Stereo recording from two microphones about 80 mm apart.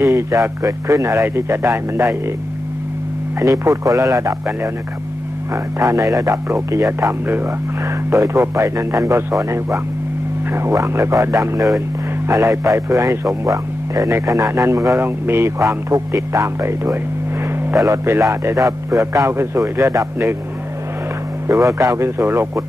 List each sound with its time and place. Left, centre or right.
0.0 s speech: right
3.3 s a man's voice: right
5.5 s speech: right
12.3 s a man's voice: right
15.0 s speech: right
15.6 s speech: right
21.5 s speech: right